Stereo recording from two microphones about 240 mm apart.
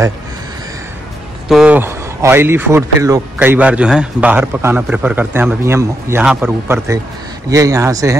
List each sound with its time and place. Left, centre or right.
1.5 s speech: centre